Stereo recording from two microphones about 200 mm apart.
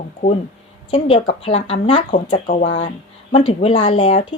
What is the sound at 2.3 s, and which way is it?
Speech, 40° left (ahead or behind).